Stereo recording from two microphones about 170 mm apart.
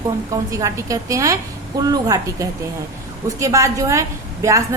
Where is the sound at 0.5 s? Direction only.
20° right (ahead or behind).